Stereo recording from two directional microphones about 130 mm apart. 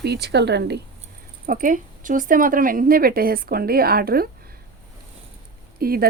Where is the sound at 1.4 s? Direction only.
90° right.